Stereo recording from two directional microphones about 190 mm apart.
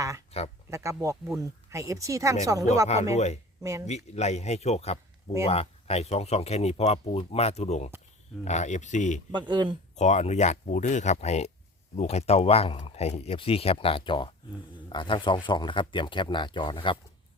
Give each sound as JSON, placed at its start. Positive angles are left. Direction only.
{"t": 0.3, "sound": "speech", "side_deg": 30}
{"t": 0.7, "sound": "speech", "side_deg": -15}
{"t": 2.8, "sound": "speech", "side_deg": 35}
{"t": 3.6, "sound": "speech", "side_deg": -15}
{"t": 3.8, "sound": "speech", "side_deg": 35}
{"t": 9.3, "sound": "speech", "side_deg": -25}
{"t": 9.9, "sound": "speech", "side_deg": 35}